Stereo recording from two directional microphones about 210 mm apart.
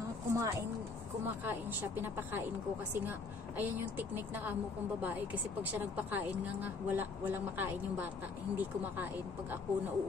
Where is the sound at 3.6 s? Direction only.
10° right (ahead or behind).